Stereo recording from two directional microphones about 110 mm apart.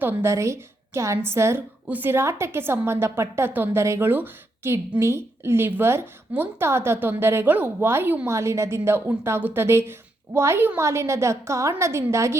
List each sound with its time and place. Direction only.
0.0 s a woman's voice: 20° right (ahead or behind)